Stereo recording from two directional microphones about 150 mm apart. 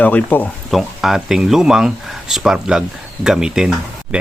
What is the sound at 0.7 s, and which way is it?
Speech, centre (ahead or behind).